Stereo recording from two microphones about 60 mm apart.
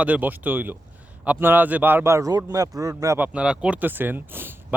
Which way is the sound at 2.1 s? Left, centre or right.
Right.